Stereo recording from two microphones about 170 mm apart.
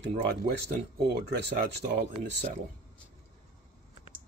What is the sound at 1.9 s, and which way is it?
Speech, 45° right (ahead or behind).